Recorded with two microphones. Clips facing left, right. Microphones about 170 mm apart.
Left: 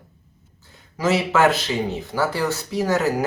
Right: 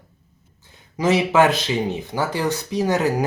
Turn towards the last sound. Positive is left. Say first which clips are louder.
# right 1 dB
turn(degrees=-20)  # may be behind; listen again after turning